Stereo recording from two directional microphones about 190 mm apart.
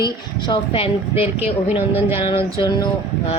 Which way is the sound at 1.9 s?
10° right (ahead or behind).